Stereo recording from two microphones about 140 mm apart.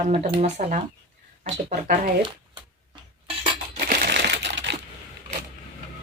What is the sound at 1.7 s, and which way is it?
Speech, 90° right.